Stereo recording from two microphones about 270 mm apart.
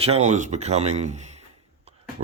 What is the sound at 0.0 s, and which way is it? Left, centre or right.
Speech, right.